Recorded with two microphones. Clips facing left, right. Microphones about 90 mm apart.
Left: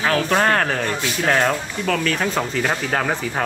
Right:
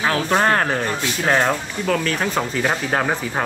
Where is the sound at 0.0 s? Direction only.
20° right (ahead or behind).